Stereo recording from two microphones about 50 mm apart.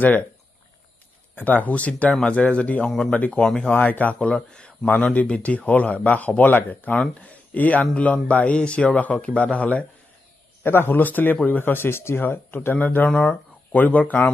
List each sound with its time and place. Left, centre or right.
1.3 s speech: left
3.4 s speech: centre
3.7 s speech: left
10.6 s speech: left
12.7 s speech: left
13.1 s speech: left